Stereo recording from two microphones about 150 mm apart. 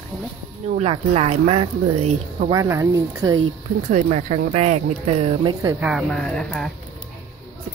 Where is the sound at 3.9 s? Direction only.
50° right (ahead or behind).